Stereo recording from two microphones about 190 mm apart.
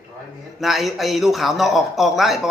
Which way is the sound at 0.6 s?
Centre (ahead or behind).